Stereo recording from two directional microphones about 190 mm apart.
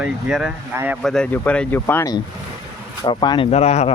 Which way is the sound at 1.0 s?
5° left (ahead or behind).